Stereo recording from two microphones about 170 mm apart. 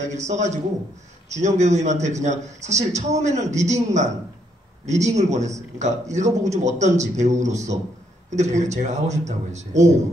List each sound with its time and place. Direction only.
0.0 s a man's voice: 40° right (ahead or behind)